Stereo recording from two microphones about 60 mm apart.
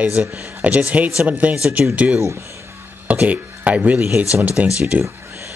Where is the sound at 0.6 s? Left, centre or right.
Right.